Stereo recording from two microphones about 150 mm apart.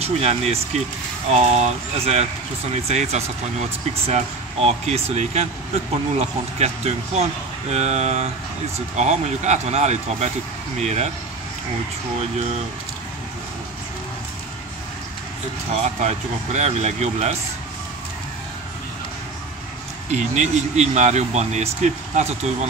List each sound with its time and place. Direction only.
0.0 s speech: 45° right (ahead or behind)
15.8 s speech: 50° right (ahead or behind)
20.1 s speech: 50° right (ahead or behind)